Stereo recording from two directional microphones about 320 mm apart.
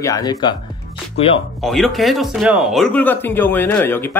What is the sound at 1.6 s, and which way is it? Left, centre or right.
Speech, centre.